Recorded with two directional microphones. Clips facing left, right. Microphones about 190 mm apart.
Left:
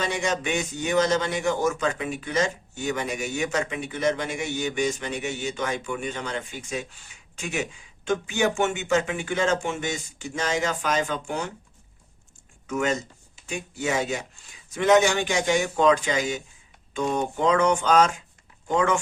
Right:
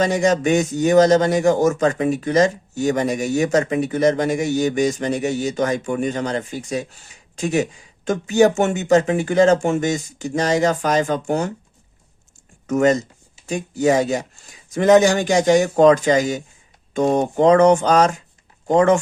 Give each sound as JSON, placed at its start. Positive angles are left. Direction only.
{"t": 0.0, "sound": "a man's voice", "side_deg": -40}
{"t": 12.6, "sound": "a man's voice", "side_deg": -40}